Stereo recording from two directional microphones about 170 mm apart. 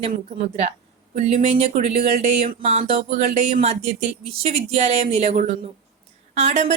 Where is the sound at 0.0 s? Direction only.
40° right (ahead or behind).